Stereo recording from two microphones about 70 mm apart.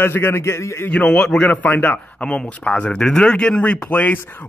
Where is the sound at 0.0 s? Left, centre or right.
Left.